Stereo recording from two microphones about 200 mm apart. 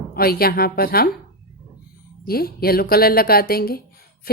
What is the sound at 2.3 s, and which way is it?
A woman's voice, 50° left (ahead or behind).